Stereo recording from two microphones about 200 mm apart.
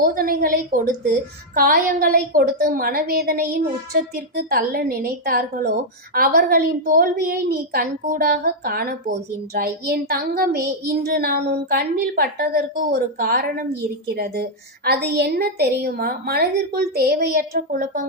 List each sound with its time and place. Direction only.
0.0 s a woman's voice: 45° right (ahead or behind)